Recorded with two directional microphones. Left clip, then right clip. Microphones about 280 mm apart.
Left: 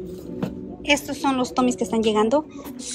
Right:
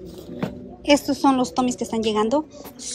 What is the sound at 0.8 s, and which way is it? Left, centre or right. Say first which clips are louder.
A woman's voice: right 4 dB; centre.